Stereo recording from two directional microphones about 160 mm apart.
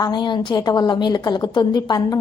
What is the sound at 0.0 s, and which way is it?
A woman's voice, 25° left (ahead or behind).